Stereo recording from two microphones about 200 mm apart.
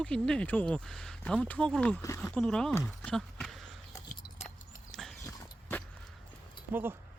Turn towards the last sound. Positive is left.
turn(degrees=-10)  # may be behind; listen again after turning